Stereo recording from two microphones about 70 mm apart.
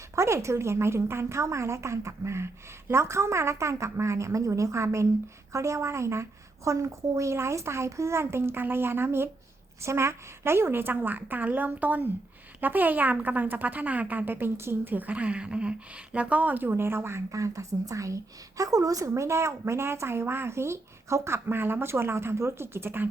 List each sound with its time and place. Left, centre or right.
0.2 s a woman's voice: right